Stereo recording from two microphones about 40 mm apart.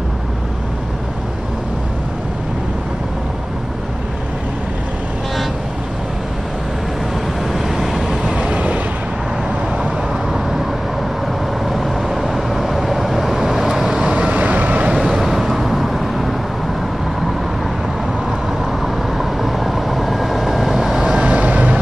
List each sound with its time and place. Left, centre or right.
7.5 s vehicle: centre
8.2 s train: right
11.6 s vehicle: centre
14.1 s vehicle: right
15.1 s vehicle: centre
19.1 s vehicle: centre
21.3 s vehicle: right